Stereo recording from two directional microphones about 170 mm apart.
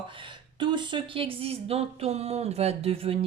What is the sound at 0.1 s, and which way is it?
Speech, 30° right (ahead or behind).